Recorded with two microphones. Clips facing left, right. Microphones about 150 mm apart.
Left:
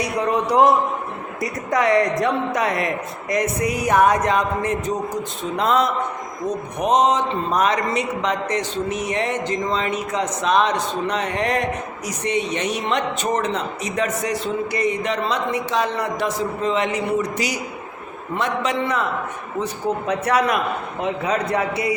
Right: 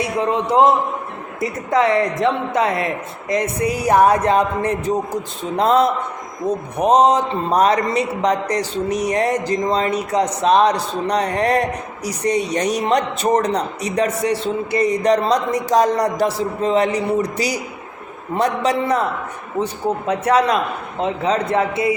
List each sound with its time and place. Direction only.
0.0 s a woman's voice: 25° right (ahead or behind)